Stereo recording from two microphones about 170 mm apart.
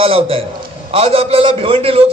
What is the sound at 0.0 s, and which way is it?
A man's voice, 35° right (ahead or behind).